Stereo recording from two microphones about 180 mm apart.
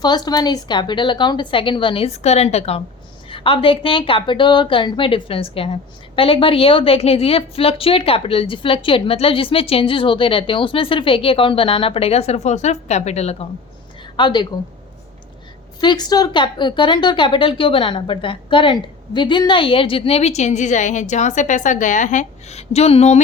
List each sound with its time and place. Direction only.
0.0 s a woman's voice: 25° left (ahead or behind)
14.2 s a woman's voice: 25° left (ahead or behind)
15.8 s a woman's voice: 25° left (ahead or behind)